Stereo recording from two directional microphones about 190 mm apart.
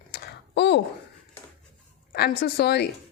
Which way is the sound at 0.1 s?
60° left (ahead or behind).